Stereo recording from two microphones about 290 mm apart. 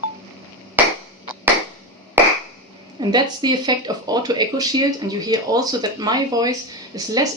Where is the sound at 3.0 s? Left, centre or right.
Centre.